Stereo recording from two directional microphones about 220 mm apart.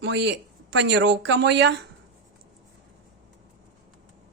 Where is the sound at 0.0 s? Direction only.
50° right (ahead or behind).